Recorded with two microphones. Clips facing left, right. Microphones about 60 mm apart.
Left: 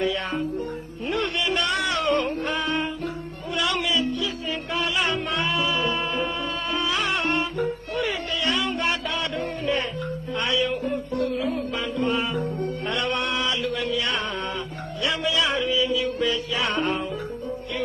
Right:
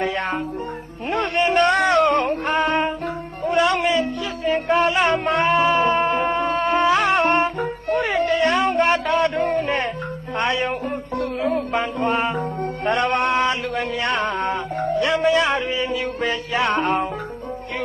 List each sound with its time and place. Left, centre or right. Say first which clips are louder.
0.0 s music: right 2 dB; right